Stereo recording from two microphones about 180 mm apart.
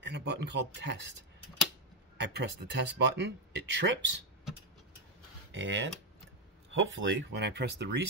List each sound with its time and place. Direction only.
0.0 s speech: 70° right (ahead or behind)
2.1 s speech: 70° right (ahead or behind)
5.5 s speech: 90° right; by 8.0 s 70° right (ahead or behind)